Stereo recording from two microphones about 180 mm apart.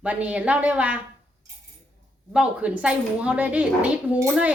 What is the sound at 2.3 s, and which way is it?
A woman's voice, 5° right (ahead or behind).